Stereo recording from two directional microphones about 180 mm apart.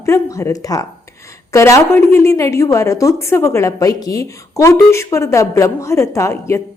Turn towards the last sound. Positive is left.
turn(degrees=15)  # may be behind; listen again after turning